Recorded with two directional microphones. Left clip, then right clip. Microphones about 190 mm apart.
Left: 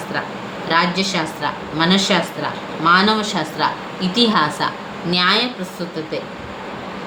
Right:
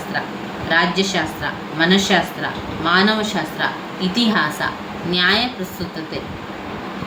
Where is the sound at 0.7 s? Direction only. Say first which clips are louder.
Even; 40° left (ahead or behind).